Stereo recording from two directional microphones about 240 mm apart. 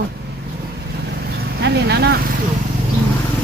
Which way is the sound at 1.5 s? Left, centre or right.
Right.